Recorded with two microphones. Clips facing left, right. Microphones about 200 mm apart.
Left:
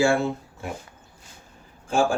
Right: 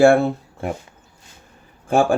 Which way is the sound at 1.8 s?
60° right (ahead or behind).